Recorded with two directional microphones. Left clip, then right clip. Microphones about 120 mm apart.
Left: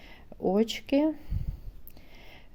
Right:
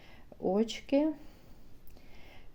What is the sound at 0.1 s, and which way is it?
Speech, 50° left (ahead or behind).